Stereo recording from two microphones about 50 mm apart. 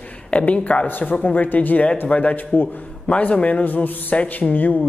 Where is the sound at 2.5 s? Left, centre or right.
Left.